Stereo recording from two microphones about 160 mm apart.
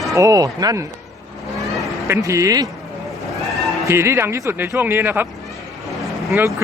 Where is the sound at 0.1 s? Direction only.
20° right (ahead or behind).